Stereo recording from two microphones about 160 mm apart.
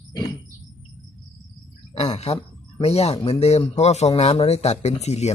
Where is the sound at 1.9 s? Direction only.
40° left (ahead or behind).